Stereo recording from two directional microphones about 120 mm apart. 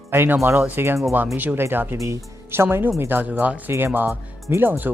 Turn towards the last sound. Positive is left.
turn(degrees=-15)  # may be behind; listen again after turning